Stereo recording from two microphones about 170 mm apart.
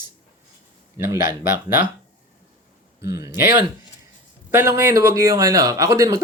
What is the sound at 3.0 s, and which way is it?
Speech, 20° right (ahead or behind).